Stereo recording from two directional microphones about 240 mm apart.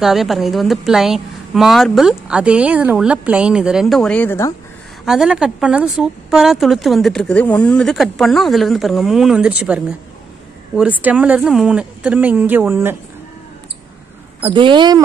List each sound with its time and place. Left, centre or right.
0.0 s speech: centre
5.0 s speech: centre
14.4 s speech: centre